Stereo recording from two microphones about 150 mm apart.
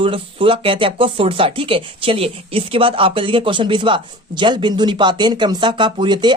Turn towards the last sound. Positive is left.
turn(degrees=-30)  # may be behind; listen again after turning